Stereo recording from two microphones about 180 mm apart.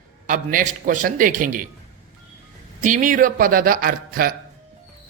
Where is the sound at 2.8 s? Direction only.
45° right (ahead or behind).